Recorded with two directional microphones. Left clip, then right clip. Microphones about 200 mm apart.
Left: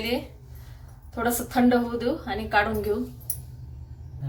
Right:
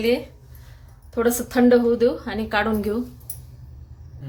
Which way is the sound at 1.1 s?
55° right (ahead or behind).